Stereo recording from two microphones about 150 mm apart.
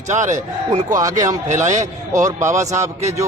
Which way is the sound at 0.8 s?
25° right (ahead or behind).